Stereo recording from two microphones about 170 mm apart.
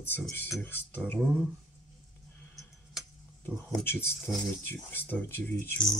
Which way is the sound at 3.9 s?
15° left (ahead or behind).